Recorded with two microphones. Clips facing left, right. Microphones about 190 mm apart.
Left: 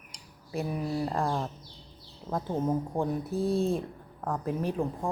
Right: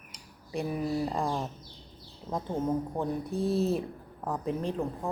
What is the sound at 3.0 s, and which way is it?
Speech, centre (ahead or behind).